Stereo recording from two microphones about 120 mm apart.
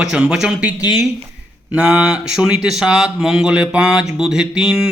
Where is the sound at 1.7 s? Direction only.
10° right (ahead or behind).